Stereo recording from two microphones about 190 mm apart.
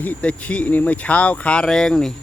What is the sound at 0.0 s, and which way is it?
A man's voice, 10° left (ahead or behind).